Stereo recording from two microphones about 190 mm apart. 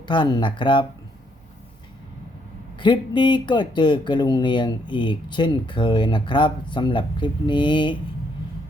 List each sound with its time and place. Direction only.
0.1 s speech: 20° left (ahead or behind)
2.7 s speech: 25° left (ahead or behind)